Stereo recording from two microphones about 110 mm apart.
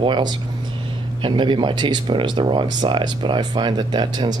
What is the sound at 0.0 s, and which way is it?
Speech, 45° right (ahead or behind).